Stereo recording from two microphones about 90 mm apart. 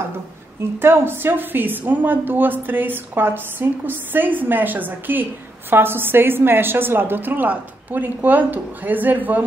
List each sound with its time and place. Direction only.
0.7 s a woman's voice: 25° right (ahead or behind)